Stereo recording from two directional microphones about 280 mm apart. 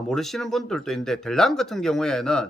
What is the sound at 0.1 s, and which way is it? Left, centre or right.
A man's voice, centre.